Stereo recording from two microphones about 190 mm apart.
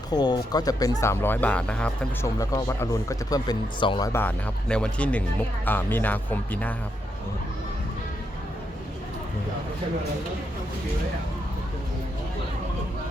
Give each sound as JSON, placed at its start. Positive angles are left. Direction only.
{"t": 0.1, "sound": "speech", "side_deg": 20}
{"t": 2.4, "sound": "speech", "side_deg": 15}
{"t": 4.1, "sound": "speech", "side_deg": 10}